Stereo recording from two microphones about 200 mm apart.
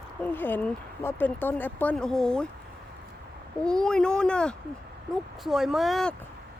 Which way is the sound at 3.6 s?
5° left (ahead or behind).